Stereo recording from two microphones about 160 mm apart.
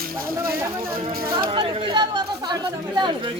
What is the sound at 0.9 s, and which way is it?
Speech, 35° right (ahead or behind).